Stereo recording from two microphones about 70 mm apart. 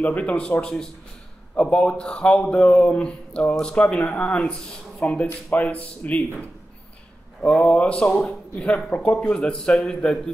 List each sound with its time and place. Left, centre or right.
0.0 s a man's voice: left
7.4 s speech: centre